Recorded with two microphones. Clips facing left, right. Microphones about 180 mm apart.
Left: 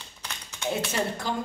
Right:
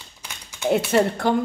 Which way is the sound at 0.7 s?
60° right (ahead or behind).